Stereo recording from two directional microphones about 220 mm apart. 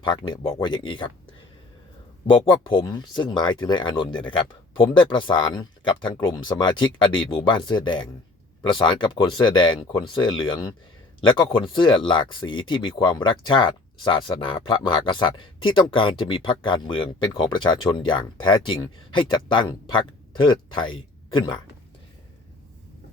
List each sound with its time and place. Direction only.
0.0 s speech: 20° left (ahead or behind)
2.2 s speech: 20° left (ahead or behind)